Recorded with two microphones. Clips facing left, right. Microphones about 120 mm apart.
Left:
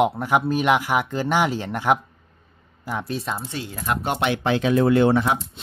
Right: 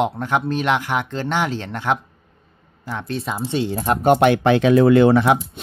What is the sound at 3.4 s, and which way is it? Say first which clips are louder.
Speech: right 9 dB; 20° right (ahead or behind).